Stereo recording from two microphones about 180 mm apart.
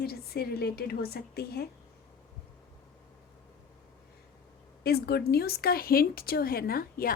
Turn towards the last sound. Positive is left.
turn(degrees=55)  # may be behind; listen again after turning